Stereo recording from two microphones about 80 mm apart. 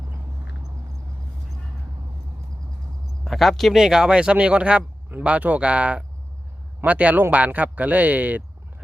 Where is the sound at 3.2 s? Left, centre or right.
Centre.